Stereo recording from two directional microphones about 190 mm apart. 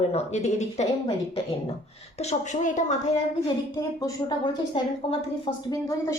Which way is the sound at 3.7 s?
20° left (ahead or behind).